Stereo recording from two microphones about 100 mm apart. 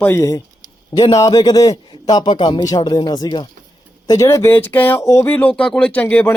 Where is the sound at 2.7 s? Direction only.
40° left (ahead or behind).